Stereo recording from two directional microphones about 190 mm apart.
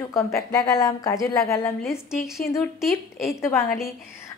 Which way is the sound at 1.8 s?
Centre (ahead or behind).